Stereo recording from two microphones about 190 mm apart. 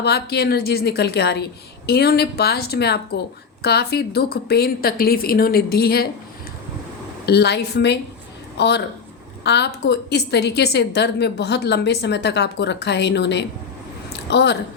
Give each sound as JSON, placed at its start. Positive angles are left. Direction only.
{"t": 0.0, "sound": "a woman's voice", "side_deg": 60}
{"t": 7.3, "sound": "a woman's voice", "side_deg": 60}
{"t": 14.1, "sound": "a sound", "side_deg": 65}